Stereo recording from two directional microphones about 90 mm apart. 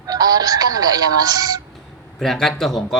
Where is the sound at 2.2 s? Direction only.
5° left (ahead or behind).